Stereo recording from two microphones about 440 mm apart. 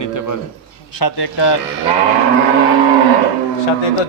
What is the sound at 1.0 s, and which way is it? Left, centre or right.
Speech, left.